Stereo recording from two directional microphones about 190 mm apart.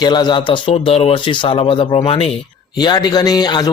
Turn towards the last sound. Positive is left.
turn(degrees=20)  # may be behind; listen again after turning